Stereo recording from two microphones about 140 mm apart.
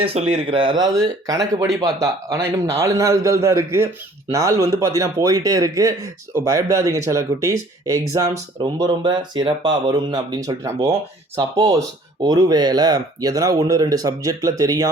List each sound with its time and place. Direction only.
0.0 s a man's voice: 45° right (ahead or behind); by 8.4 s 20° right (ahead or behind)
8.6 s a man's voice: 30° right (ahead or behind)